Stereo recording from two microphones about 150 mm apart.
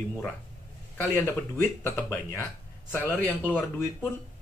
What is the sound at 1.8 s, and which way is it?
Speech, 20° left (ahead or behind).